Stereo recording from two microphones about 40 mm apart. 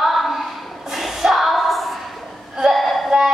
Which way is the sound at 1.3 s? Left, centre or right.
Centre.